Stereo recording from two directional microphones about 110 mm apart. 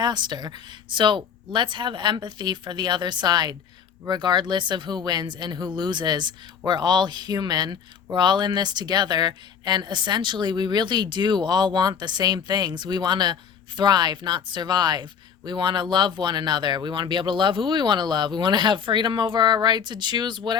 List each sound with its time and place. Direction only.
0.0 s speech: 40° right (ahead or behind)